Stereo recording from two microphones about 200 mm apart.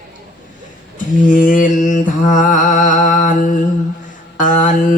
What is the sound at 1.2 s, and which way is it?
Mantra, 40° left (ahead or behind).